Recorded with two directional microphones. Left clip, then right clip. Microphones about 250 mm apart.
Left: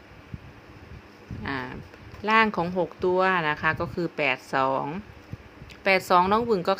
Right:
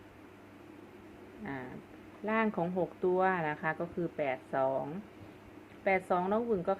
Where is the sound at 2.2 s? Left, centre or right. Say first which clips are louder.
Left 11 dB; left.